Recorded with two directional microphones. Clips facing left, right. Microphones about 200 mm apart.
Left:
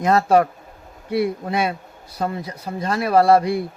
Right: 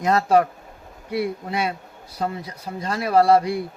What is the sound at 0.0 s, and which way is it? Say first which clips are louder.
Speech: left 3 dB; 55° left (ahead or behind).